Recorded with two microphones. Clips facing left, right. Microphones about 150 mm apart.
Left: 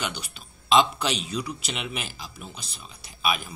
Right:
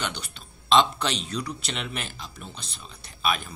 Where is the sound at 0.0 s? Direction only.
5° left (ahead or behind).